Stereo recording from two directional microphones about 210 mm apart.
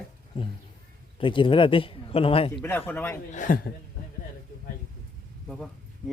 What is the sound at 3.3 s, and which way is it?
Speech, 40° left (ahead or behind).